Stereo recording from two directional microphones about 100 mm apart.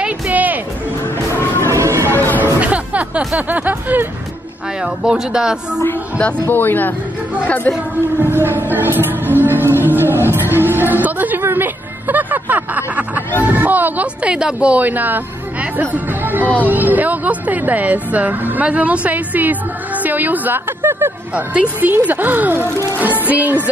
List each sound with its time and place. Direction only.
0.0 s music: 15° right (ahead or behind)
1.7 s a sound: 30° right (ahead or behind)
2.1 s music: 20° left (ahead or behind)
2.6 s music: 15° right (ahead or behind)
3.3 s speech: 15° right (ahead or behind)
5.8 s music: 15° left (ahead or behind)
6.4 s speech: 20° left (ahead or behind)
7.4 s music: 15° left (ahead or behind)
8.2 s music: 20° right (ahead or behind)
10.3 s speech: 20° right (ahead or behind)